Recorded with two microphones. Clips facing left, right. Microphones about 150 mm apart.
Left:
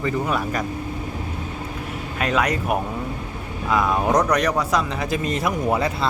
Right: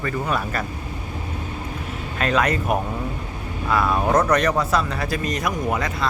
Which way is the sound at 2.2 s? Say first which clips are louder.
Right 1 dB; 10° left (ahead or behind).